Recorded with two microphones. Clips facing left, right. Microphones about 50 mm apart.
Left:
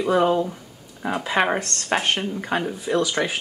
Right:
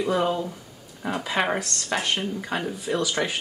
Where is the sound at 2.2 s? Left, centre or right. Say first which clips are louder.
Left 3 dB; left.